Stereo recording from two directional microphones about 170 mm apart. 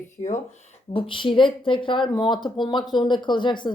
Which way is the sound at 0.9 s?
30° left (ahead or behind).